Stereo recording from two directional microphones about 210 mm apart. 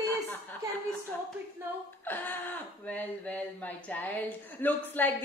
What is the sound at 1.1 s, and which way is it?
Speech, 5° left (ahead or behind).